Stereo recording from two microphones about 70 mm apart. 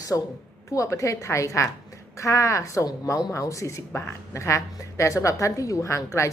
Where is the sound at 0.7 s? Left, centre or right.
Left.